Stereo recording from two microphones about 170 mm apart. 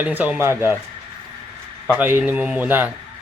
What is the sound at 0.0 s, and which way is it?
Speech, 10° right (ahead or behind).